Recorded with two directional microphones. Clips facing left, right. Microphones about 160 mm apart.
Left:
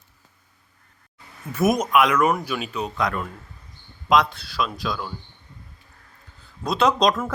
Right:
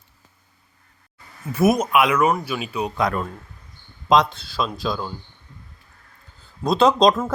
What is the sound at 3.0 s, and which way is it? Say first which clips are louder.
Speech: right 3 dB; 35° right (ahead or behind).